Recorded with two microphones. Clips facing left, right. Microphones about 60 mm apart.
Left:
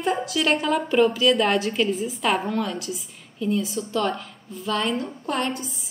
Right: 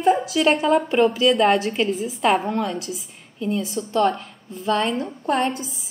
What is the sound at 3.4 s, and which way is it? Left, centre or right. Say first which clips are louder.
Speech: even; right.